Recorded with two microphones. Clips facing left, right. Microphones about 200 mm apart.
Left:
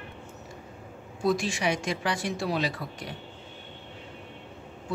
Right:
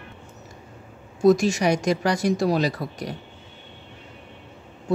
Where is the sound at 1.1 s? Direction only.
45° right (ahead or behind).